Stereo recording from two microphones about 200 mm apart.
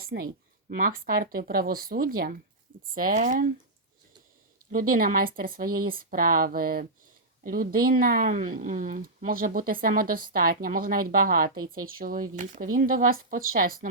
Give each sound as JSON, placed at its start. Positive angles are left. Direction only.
{"t": 0.0, "sound": "a woman's voice", "side_deg": -50}
{"t": 4.7, "sound": "a woman's voice", "side_deg": -45}